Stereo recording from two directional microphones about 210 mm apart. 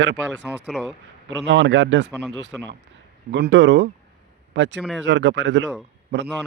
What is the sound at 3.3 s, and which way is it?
A man's voice, 60° right (ahead or behind).